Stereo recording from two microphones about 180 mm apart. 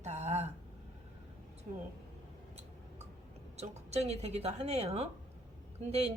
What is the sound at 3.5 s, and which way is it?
A woman's voice, 35° right (ahead or behind).